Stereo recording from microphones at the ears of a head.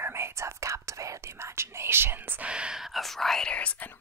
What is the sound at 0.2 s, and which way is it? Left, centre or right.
Whispering, right.